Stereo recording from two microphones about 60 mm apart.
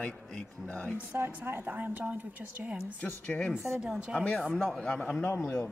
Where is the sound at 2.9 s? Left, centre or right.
Left.